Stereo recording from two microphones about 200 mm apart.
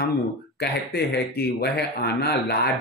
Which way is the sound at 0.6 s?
55° left (ahead or behind).